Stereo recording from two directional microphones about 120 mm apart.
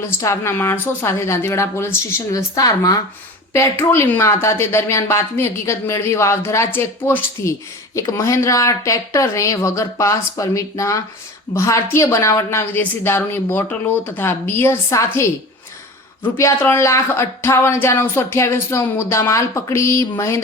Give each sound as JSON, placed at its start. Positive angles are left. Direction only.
{"t": 0.2, "sound": "speech", "side_deg": 25}